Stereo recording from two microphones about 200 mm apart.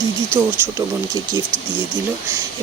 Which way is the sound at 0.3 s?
10° right (ahead or behind).